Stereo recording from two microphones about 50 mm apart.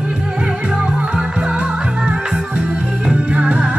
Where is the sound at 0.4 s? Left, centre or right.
Right.